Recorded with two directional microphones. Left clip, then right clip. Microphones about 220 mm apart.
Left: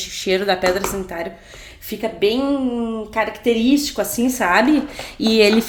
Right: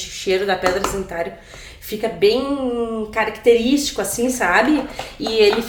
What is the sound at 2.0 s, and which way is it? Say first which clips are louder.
A woman's voice: right 2 dB; 35° left (ahead or behind).